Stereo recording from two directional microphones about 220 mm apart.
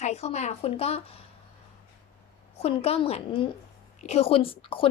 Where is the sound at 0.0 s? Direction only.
30° left (ahead or behind).